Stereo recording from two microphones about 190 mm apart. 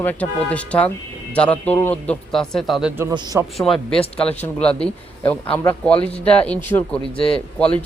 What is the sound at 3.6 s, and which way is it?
A man's voice, 5° left (ahead or behind).